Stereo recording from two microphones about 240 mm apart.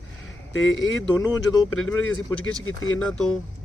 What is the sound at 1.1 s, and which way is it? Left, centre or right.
Speech, centre.